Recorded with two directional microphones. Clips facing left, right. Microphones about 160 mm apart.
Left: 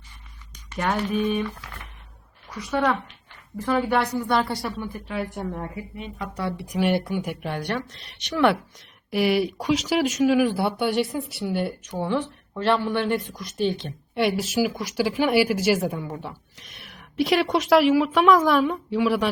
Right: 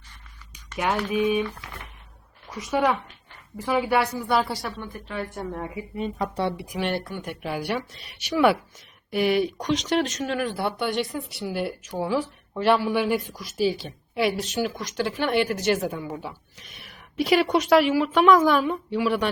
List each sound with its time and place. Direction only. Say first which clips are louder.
1.1 s a woman's voice: right 4 dB; 10° right (ahead or behind)
2.7 s a woman's voice: even; 10° right (ahead or behind)
6.0 s speech: right 8 dB; 35° right (ahead or behind)
6.7 s speech: left 5 dB; 10° left (ahead or behind)
7.4 s a woman's voice: even; 5° right (ahead or behind)